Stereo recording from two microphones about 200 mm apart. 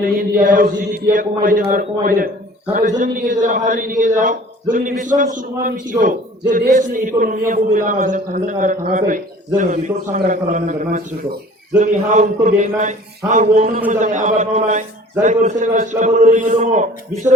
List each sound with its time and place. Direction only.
0.0 s a man's voice: 45° right (ahead or behind)